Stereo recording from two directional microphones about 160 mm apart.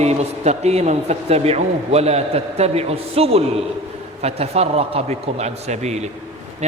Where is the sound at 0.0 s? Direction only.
40° right (ahead or behind).